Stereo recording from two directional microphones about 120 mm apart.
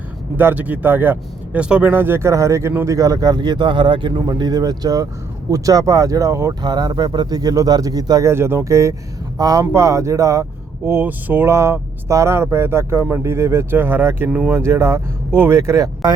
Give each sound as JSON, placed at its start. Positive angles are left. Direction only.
{"t": 0.3, "sound": "speech", "side_deg": -15}
{"t": 8.3, "sound": "speech", "side_deg": -20}